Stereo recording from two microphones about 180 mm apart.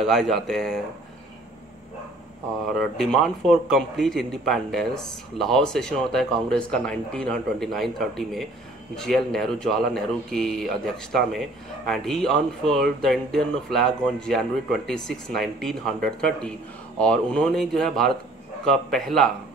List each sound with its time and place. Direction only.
0.0 s a man's voice: centre (ahead or behind)
2.8 s a man's voice: 5° left (ahead or behind)